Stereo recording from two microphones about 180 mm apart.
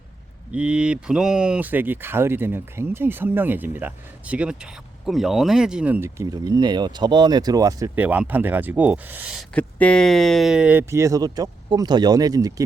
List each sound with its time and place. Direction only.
0.5 s speech: 5° right (ahead or behind)
9.6 s speech: 10° left (ahead or behind); by 12.6 s 20° right (ahead or behind)